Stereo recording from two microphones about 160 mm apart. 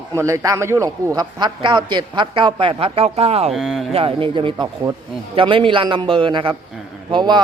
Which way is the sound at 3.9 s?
35° right (ahead or behind).